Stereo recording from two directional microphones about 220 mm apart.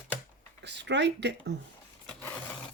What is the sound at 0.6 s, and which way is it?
Speech, 50° right (ahead or behind).